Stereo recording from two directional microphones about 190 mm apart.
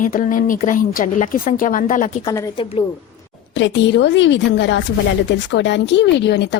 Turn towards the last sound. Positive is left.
turn(degrees=65)  # may be behind; listen again after turning